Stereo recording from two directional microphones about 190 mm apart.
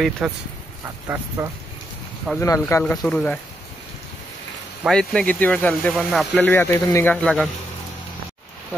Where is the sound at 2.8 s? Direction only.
5° left (ahead or behind).